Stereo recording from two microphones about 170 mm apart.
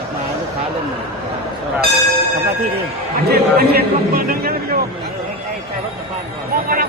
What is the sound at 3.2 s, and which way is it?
A man's voice, 65° right (ahead or behind).